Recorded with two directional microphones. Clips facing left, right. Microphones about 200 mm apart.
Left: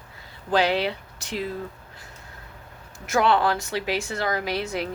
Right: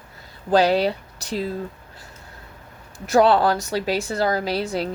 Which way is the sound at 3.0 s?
35° right (ahead or behind).